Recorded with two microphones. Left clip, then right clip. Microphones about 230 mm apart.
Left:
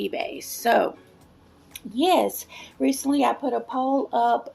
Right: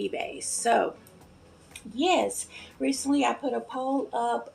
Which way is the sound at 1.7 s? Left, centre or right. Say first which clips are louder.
Left 4 dB; left.